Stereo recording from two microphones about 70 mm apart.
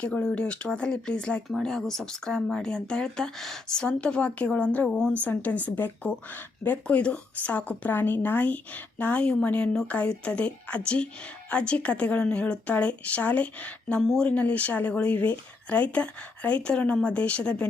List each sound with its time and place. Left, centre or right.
0.0 s speech: centre